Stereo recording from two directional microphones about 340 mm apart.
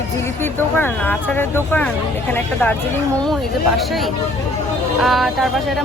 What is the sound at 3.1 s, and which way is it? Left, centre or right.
Speech, centre.